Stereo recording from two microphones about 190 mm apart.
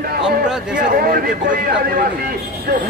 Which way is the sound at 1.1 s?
50° right (ahead or behind).